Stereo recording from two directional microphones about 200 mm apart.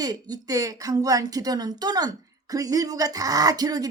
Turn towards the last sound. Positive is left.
turn(degrees=-20)  # may be behind; listen again after turning